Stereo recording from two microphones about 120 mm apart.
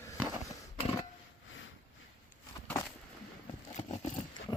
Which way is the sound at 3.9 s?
70° left (ahead or behind).